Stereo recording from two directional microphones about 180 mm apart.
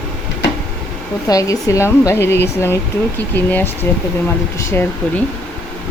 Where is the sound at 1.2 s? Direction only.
20° left (ahead or behind).